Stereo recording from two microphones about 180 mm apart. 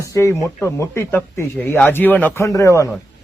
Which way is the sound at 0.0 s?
15° left (ahead or behind).